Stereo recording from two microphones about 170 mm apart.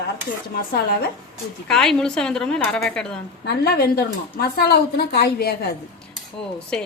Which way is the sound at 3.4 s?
70° left (ahead or behind).